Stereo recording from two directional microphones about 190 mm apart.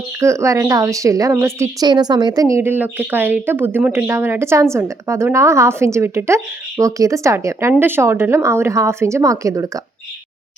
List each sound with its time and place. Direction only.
0.2 s a woman's voice: 15° right (ahead or behind)